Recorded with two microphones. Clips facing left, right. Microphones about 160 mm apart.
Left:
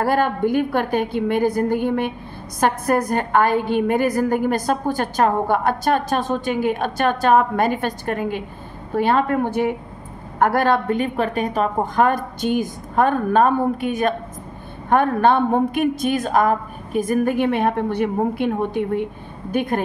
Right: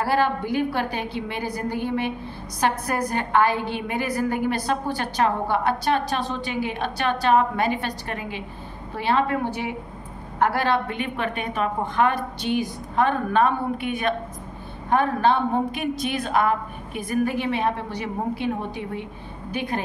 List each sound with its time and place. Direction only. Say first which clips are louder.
0.0 s a woman's voice: left 4 dB; 50° left (ahead or behind)
14.9 s a woman's voice: left 4 dB; 55° left (ahead or behind)